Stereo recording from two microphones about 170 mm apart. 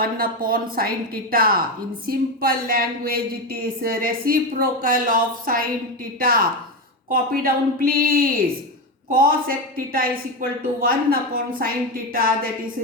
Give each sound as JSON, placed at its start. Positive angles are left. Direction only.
{"t": 0.0, "sound": "speech", "side_deg": -60}